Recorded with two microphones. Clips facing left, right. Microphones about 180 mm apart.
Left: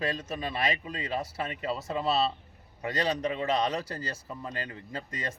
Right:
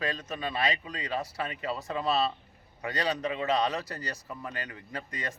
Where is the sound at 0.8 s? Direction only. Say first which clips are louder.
Left 1 dB; 30° left (ahead or behind).